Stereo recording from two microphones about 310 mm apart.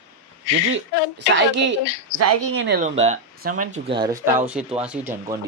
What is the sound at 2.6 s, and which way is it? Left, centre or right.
Speech, right.